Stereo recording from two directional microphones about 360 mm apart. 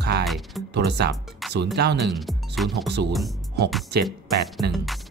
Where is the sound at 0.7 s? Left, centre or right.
Right.